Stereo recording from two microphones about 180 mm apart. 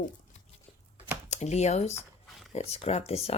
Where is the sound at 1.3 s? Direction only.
40° left (ahead or behind).